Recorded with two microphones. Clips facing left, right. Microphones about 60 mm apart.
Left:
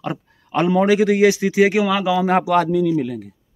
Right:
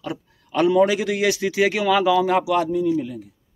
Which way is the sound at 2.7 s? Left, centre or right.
Left.